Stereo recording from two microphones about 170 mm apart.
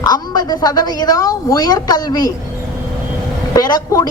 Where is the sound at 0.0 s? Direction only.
25° left (ahead or behind).